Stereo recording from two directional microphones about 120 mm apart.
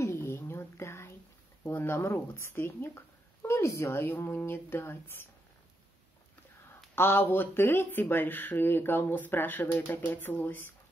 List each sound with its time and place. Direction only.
0.0 s a sound: 25° left (ahead or behind)
1.6 s speech: 20° left (ahead or behind)
7.0 s speech: 20° left (ahead or behind)